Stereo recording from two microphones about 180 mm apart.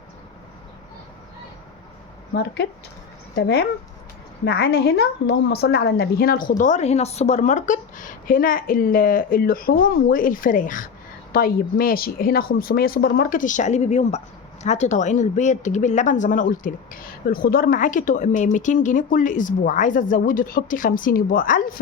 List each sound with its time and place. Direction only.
2.3 s speech: 70° left (ahead or behind); by 21.6 s 50° left (ahead or behind)